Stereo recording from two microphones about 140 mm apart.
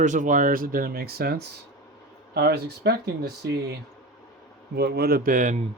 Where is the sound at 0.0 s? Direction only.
65° right (ahead or behind); by 1.4 s 90° right.